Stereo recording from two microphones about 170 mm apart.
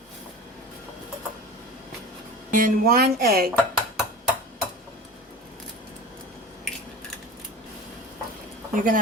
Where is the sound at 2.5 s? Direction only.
50° right (ahead or behind).